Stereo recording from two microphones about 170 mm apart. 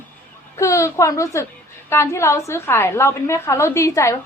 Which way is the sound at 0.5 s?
15° left (ahead or behind).